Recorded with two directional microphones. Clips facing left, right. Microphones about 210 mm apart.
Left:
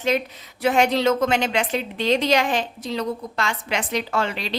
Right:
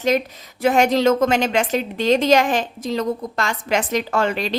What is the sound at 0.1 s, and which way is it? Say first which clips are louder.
A woman's voice: right 3 dB; 45° right (ahead or behind).